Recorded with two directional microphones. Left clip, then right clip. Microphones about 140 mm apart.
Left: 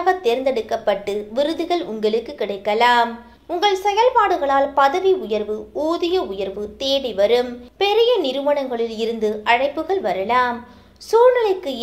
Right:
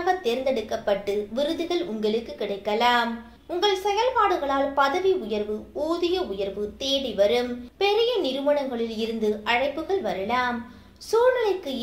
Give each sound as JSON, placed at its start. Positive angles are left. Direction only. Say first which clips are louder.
{"t": 0.0, "sound": "a woman's voice", "louder": "left 6 dB", "side_deg": 40}